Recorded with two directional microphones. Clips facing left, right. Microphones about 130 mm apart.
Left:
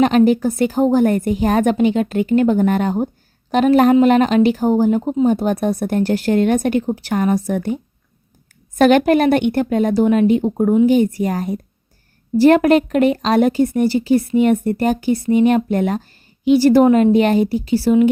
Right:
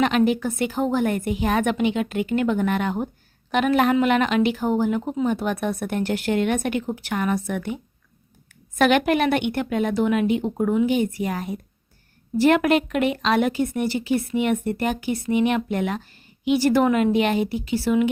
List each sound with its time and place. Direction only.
0.0 s speech: 35° left (ahead or behind)